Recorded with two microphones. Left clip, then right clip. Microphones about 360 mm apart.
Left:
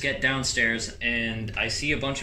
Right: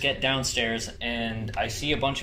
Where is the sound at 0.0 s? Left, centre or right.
Centre.